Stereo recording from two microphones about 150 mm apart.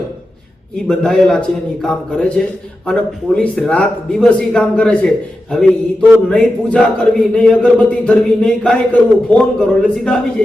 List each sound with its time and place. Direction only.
0.9 s speech: 5° left (ahead or behind)